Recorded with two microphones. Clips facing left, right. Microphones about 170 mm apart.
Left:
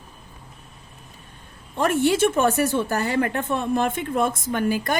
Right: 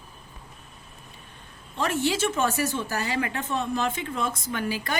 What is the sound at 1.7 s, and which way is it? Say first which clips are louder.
A woman's voice: left 6 dB; 55° left (ahead or behind).